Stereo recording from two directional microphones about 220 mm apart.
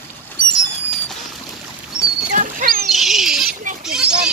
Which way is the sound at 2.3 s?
35° right (ahead or behind).